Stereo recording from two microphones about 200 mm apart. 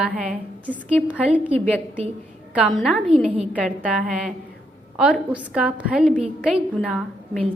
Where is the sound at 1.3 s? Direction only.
25° right (ahead or behind).